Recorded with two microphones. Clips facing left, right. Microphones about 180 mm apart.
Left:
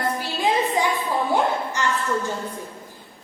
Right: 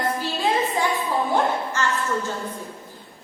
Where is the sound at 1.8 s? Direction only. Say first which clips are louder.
Left 1 dB; 15° left (ahead or behind).